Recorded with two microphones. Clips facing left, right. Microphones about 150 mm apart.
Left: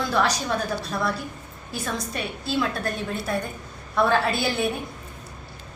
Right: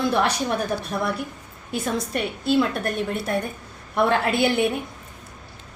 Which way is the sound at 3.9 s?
20° right (ahead or behind).